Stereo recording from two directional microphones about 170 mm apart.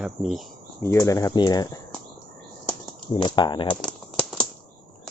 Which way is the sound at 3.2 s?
25° left (ahead or behind).